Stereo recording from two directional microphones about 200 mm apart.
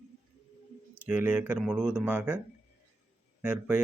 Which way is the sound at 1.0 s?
5° right (ahead or behind).